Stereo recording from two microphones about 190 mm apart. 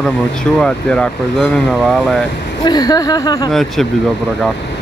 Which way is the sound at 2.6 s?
20° left (ahead or behind).